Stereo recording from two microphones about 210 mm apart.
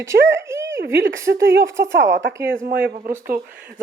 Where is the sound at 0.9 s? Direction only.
65° right (ahead or behind).